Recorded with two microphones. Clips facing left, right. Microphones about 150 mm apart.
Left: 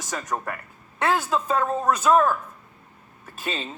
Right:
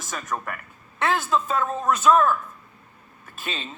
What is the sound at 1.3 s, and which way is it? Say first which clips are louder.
Speech: left 1 dB; 35° left (ahead or behind).